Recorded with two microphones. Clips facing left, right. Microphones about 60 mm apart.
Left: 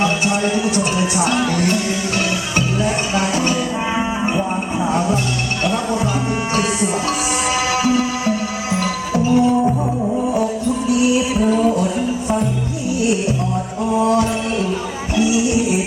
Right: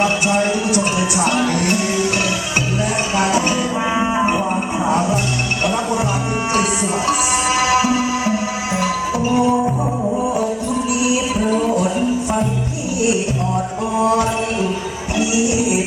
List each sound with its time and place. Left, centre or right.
0.5 s music: centre
1.5 s music: right
3.3 s music: centre
8.8 s music: right